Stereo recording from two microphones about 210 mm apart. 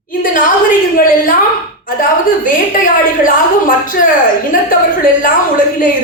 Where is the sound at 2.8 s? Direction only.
40° left (ahead or behind).